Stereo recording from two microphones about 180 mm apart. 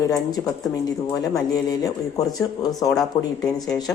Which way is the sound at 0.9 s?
20° left (ahead or behind).